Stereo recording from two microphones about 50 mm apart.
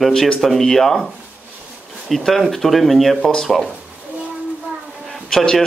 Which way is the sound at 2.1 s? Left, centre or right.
Centre.